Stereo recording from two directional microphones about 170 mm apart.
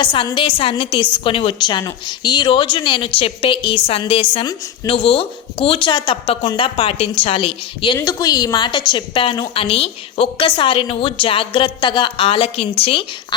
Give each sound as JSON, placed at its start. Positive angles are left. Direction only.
{"t": 0.0, "sound": "a woman's voice", "side_deg": 30}